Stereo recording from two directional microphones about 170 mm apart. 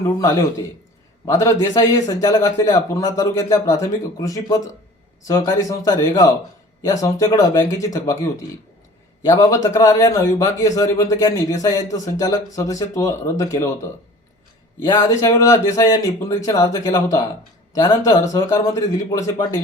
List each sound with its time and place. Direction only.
0.2 s a man's voice: 20° left (ahead or behind)
14.8 s a man's voice: 15° left (ahead or behind)